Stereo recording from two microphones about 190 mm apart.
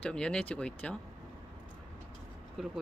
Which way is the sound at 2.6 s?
Centre (ahead or behind).